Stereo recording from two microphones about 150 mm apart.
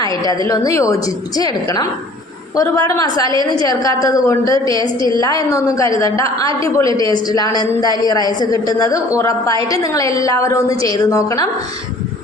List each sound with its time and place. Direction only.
0.0 s a woman's voice: 25° left (ahead or behind)
2.6 s a woman's voice: 25° left (ahead or behind)
4.8 s a woman's voice: 30° right (ahead or behind)
5.2 s a woman's voice: 20° left (ahead or behind)